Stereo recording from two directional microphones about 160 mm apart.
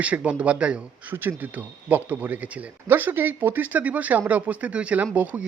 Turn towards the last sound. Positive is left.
turn(degrees=-10)  # may be behind; listen again after turning